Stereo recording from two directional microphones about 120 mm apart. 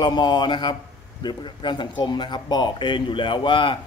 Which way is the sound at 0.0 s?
35° left (ahead or behind).